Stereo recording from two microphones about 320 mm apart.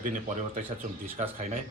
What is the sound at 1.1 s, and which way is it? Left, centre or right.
Speech, right.